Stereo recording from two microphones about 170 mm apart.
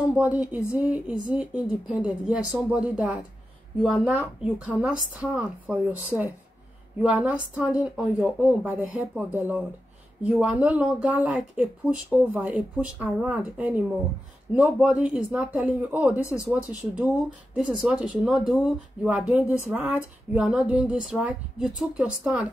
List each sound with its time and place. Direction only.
0.1 s speech: 10° right (ahead or behind)
4.6 s speech: 5° right (ahead or behind)
16.2 s speech: 15° left (ahead or behind)
16.4 s speech: 5° right (ahead or behind)